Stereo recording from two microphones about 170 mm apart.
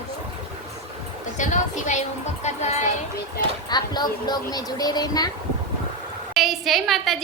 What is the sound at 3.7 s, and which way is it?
Speech, 25° left (ahead or behind).